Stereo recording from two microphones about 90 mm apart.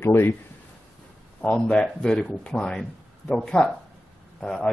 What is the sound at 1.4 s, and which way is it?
Speech, 15° left (ahead or behind).